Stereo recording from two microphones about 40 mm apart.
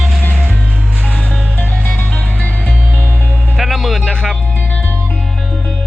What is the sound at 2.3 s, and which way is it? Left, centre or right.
Music, right.